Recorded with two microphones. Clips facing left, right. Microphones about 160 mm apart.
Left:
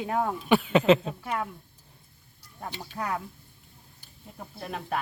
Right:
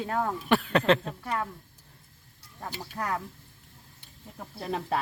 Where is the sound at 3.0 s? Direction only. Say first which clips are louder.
Even; 10° left (ahead or behind).